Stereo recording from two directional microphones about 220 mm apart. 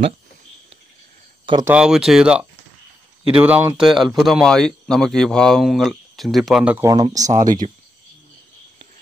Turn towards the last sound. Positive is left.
turn(degrees=-15)  # may be behind; listen again after turning